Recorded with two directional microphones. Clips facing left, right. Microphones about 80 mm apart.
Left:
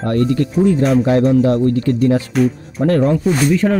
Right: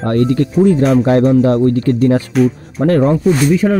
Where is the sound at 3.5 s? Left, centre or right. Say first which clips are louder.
Right 2 dB; centre.